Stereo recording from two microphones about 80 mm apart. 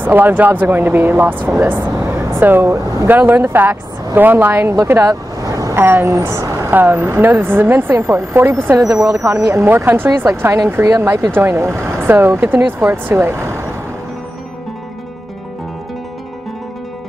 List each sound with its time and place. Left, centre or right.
0.0 s speech: right
2.0 s a sound: right
3.1 s speech: right
4.8 s vehicle: right
5.8 s speech: right
6.4 s a sound: right
6.7 s speech: right
8.7 s speech: right